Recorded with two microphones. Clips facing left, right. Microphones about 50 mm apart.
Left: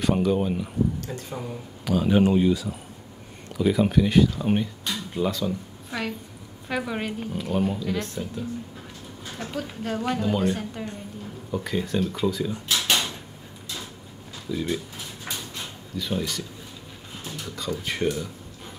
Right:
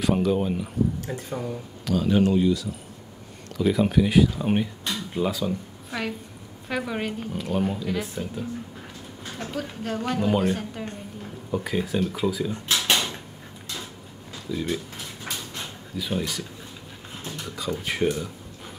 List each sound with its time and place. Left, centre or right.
0.0 s speech: centre
1.3 s speech: centre
3.5 s speech: centre
14.5 s speech: centre
16.0 s speech: centre